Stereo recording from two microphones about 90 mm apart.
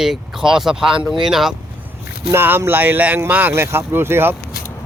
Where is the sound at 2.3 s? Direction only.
25° right (ahead or behind).